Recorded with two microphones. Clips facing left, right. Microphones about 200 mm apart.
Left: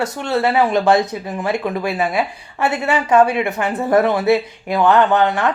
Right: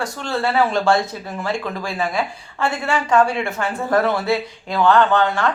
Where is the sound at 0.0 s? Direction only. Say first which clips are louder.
Left 4 dB; 20° left (ahead or behind).